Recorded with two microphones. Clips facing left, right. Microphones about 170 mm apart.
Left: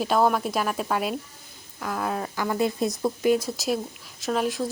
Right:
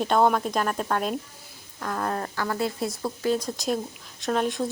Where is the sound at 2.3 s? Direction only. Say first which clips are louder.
Left 3 dB; 15° left (ahead or behind).